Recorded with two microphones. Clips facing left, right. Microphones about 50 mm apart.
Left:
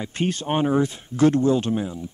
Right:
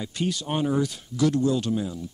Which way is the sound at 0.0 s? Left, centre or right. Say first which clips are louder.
Left 3 dB; left.